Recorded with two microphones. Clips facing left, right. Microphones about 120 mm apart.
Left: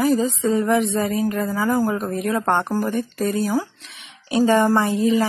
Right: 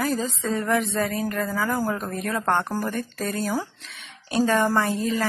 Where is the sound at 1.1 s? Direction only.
15° left (ahead or behind).